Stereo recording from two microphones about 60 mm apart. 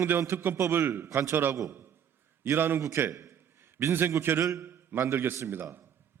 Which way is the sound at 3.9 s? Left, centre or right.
Right.